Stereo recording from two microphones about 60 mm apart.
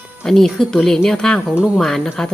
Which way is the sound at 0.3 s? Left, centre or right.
Centre.